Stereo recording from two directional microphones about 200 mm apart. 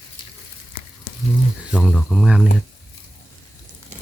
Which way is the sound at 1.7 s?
5° left (ahead or behind).